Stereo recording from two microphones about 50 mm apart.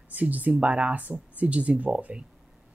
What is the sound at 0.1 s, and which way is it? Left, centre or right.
Speech, right.